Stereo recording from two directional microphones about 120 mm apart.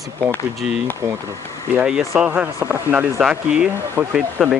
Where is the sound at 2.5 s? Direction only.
20° right (ahead or behind).